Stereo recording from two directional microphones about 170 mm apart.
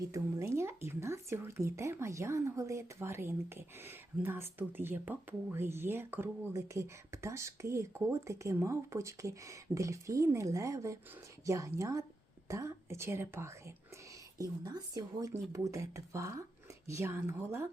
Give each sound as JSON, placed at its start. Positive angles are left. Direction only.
{"t": 0.0, "sound": "speech", "side_deg": -20}